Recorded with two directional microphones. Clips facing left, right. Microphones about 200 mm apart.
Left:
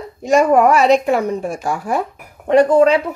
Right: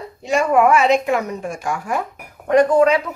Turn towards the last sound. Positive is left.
turn(degrees=30)  # may be behind; listen again after turning